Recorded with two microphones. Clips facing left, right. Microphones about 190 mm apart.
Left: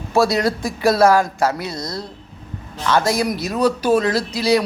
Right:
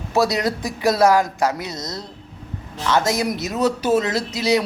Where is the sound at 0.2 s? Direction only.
20° right (ahead or behind).